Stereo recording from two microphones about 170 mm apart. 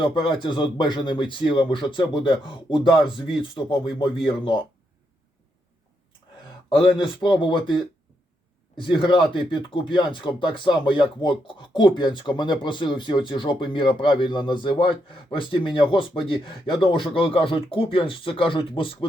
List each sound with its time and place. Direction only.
0.0 s speech: 30° left (ahead or behind)
6.7 s speech: 30° left (ahead or behind)
9.0 s speech: 30° left (ahead or behind)